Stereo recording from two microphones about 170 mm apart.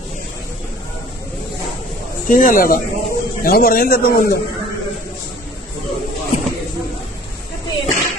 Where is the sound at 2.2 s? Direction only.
55° left (ahead or behind).